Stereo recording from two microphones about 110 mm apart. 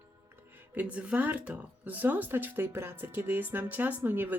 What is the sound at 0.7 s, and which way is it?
Speech, 10° right (ahead or behind).